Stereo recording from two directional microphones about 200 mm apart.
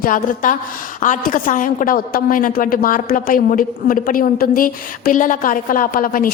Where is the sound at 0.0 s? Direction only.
40° left (ahead or behind).